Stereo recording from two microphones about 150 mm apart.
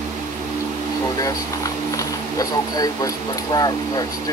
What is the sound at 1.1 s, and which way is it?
Speech, 25° left (ahead or behind).